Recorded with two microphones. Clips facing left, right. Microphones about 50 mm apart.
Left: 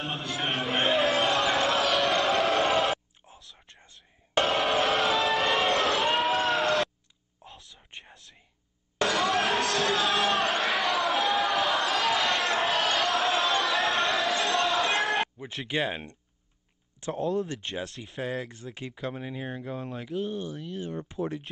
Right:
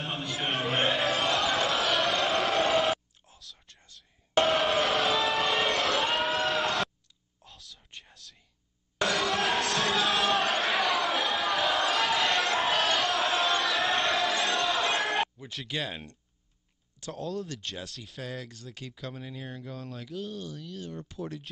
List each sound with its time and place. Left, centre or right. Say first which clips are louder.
0.0 s music: left 1 dB; centre
3.3 s whispering: left 1 dB; left
4.5 s a sound: left 3 dB; centre
7.4 s whispering: left 3 dB; left
9.0 s a sound: left 2 dB; centre
15.3 s speech: left 5 dB; left